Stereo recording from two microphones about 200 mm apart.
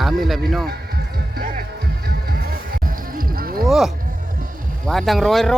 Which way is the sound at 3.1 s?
45° right (ahead or behind).